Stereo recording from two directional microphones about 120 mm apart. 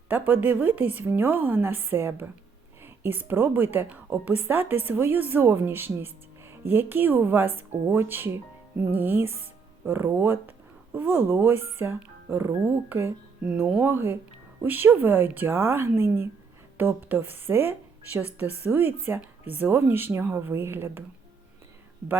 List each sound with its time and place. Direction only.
0.1 s a woman's voice: 15° right (ahead or behind)
13.4 s a woman's voice: 10° right (ahead or behind)